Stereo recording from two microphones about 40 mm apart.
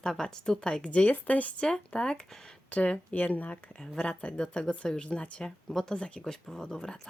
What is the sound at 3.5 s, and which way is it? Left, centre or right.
A woman's voice, left.